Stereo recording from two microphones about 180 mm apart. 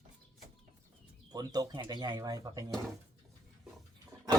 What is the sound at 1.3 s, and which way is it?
Speech, 20° right (ahead or behind).